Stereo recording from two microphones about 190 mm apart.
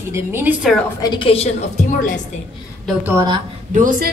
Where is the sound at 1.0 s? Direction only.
25° left (ahead or behind).